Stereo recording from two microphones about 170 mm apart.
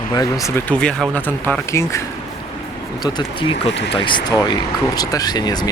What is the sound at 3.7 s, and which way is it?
Speech, 90° left.